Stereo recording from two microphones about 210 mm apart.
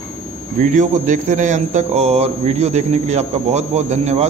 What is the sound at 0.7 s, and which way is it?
Speech, 35° right (ahead or behind).